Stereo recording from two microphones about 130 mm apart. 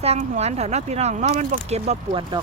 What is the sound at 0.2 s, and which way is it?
Speech, 55° right (ahead or behind).